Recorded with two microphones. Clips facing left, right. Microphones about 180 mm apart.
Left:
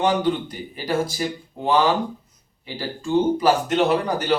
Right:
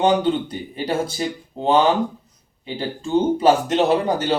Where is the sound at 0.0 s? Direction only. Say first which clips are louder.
Right 3 dB; 25° right (ahead or behind).